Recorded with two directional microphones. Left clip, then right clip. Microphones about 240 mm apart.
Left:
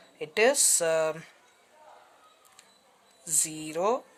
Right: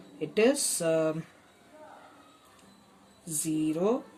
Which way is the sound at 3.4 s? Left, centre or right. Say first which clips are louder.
Right 1 dB; left.